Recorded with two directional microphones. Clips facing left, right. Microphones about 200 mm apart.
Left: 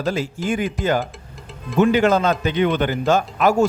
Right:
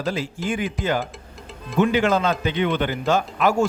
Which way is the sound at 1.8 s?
40° left (ahead or behind).